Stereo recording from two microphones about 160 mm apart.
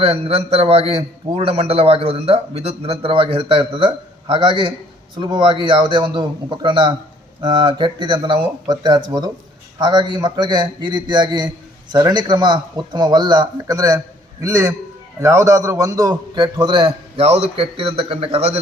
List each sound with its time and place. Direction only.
0.0 s a man's voice: 40° right (ahead or behind)